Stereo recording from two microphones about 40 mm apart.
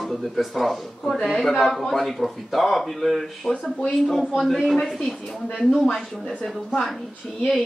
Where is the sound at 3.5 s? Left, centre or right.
Centre.